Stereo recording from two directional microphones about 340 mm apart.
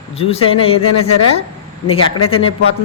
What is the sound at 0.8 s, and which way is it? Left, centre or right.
Speech, left.